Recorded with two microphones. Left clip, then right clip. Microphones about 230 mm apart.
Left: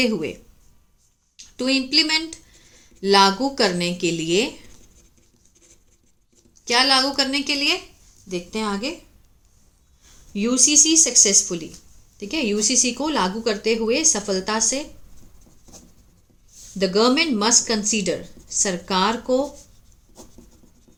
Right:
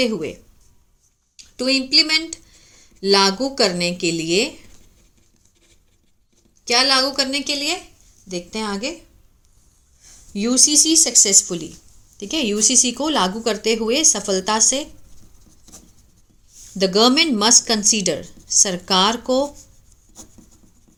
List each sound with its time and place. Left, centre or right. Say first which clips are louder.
0.0 s speech: right 1 dB; centre
1.5 s speech: right 3 dB; centre
6.7 s speech: right 1 dB; centre
10.3 s speech: right 1 dB; right
16.7 s speech: right 3 dB; right